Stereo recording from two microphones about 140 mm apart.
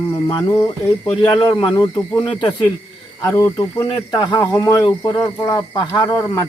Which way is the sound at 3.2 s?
20° left (ahead or behind).